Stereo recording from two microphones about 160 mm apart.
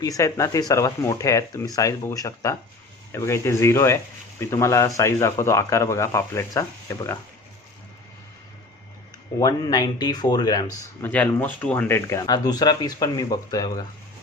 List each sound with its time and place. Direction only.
0.0 s speech: 20° left (ahead or behind)
9.4 s speech: 25° left (ahead or behind)
11.1 s speech: 10° left (ahead or behind)